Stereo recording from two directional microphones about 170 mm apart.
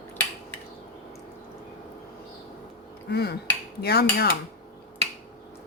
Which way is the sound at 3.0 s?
70° left (ahead or behind).